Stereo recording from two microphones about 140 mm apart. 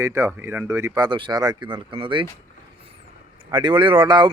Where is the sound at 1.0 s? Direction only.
30° right (ahead or behind).